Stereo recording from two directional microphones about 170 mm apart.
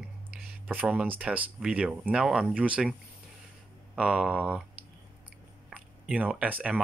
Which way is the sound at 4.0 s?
5° right (ahead or behind).